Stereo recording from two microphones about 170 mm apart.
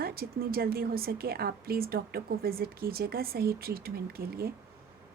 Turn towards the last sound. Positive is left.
turn(degrees=-65)  # may be behind; listen again after turning